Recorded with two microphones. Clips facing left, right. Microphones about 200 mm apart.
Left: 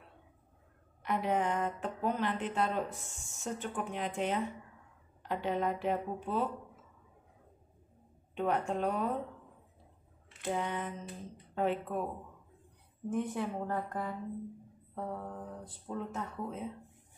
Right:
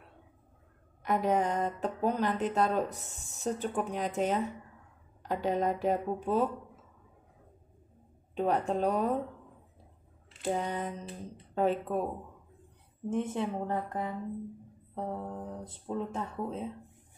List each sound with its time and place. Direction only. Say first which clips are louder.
1.0 s speech: right 4 dB; 40° right (ahead or behind)
8.4 s speech: right 3 dB; 35° right (ahead or behind)
10.4 s speech: right 3 dB; 40° right (ahead or behind)
13.1 s speech: right 3 dB; 25° right (ahead or behind)